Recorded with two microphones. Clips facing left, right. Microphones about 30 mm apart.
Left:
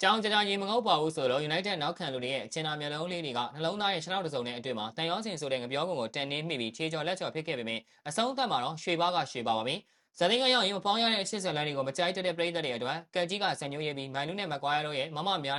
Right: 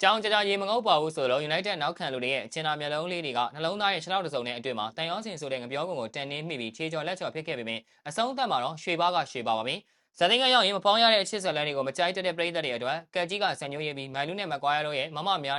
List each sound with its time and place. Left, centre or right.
0.0 s speech: centre
5.1 s speech: centre
10.5 s speech: right
11.2 s speech: centre